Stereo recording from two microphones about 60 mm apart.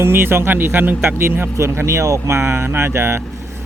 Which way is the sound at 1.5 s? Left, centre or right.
Right.